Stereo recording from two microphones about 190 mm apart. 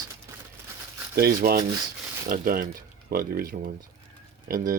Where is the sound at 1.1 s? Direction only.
55° right (ahead or behind).